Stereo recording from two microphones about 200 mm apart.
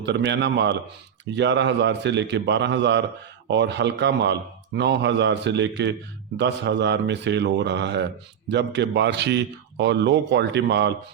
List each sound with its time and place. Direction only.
0.0 s a man's voice: 60° right (ahead or behind)